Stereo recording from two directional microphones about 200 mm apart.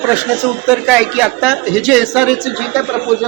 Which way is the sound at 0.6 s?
5° right (ahead or behind).